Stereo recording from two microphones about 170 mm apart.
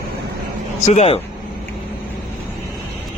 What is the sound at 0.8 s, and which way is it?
Speech, 40° left (ahead or behind).